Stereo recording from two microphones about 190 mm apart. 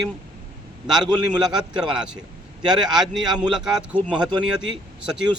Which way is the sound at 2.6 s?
20° right (ahead or behind).